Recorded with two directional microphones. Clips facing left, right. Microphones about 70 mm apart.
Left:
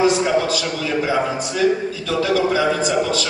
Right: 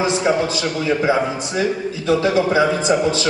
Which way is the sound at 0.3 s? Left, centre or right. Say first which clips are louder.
Right 1 dB; right.